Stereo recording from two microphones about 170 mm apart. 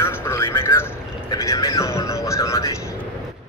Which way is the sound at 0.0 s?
15° left (ahead or behind).